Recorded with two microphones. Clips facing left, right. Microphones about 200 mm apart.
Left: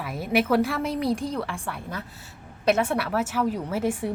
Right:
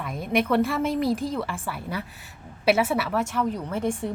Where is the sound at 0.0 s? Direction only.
5° left (ahead or behind).